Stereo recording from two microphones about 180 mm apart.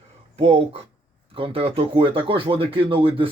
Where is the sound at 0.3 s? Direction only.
35° right (ahead or behind).